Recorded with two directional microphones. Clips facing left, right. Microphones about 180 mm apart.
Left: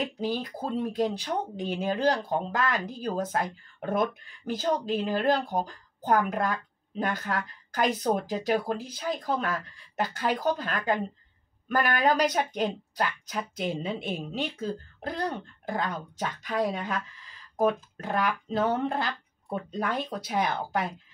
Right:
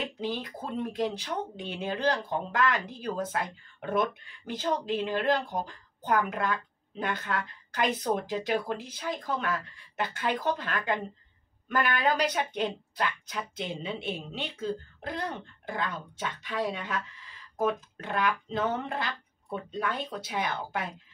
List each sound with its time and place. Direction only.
0.0 s speech: 40° left (ahead or behind)